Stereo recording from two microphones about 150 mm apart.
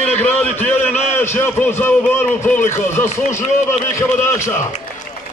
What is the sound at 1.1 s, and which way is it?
A man's voice, 15° left (ahead or behind).